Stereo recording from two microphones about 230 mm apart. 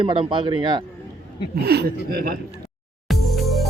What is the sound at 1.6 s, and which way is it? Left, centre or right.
Speech, right.